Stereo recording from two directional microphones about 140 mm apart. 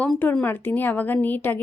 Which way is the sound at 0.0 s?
10° left (ahead or behind).